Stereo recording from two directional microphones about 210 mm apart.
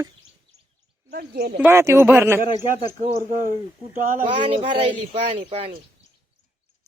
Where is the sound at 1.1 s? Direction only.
45° right (ahead or behind).